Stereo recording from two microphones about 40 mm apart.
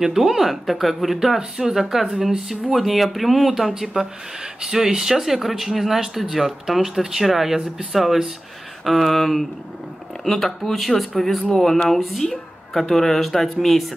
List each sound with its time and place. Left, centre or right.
0.0 s speech: centre